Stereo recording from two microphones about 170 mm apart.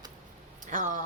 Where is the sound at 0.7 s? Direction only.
50° right (ahead or behind).